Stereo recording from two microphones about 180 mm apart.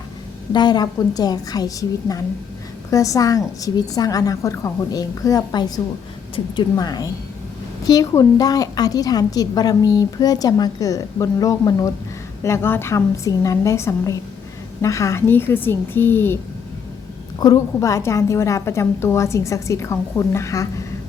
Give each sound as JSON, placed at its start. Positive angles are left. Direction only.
{"t": 0.5, "sound": "a woman's voice", "side_deg": 25}
{"t": 17.4, "sound": "a woman's voice", "side_deg": 20}